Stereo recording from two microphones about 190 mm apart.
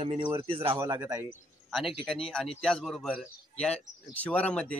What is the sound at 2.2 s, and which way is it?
Speech, centre (ahead or behind).